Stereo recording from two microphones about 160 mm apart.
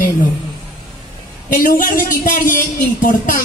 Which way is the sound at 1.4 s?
60° left (ahead or behind).